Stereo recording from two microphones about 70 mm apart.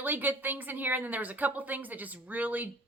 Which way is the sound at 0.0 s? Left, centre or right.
Right.